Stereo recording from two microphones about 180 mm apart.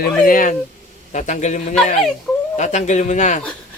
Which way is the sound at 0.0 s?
50° left (ahead or behind).